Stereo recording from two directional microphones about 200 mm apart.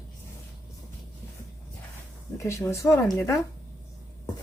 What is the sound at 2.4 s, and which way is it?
Speech, 15° left (ahead or behind).